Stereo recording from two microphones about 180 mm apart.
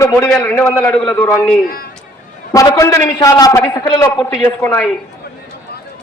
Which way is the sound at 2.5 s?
20° left (ahead or behind).